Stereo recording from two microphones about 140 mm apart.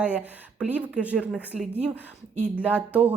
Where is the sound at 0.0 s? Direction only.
10° right (ahead or behind).